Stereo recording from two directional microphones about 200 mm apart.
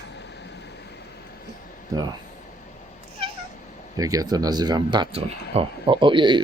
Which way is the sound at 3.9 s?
15° right (ahead or behind).